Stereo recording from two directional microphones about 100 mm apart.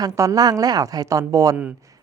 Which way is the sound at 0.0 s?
35° right (ahead or behind).